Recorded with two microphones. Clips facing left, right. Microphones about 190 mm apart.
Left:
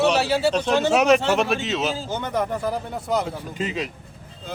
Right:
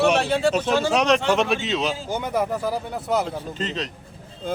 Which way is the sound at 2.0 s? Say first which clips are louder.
Right 1 dB; 10° right (ahead or behind).